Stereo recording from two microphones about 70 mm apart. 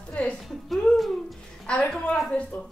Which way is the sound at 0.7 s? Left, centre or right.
Centre.